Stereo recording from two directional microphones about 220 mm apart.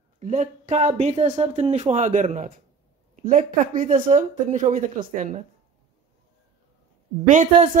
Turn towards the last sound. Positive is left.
turn(degrees=-35)  # may be behind; listen again after turning